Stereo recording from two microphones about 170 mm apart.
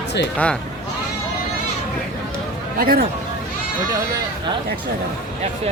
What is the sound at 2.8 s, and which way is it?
Speech, 60° right (ahead or behind).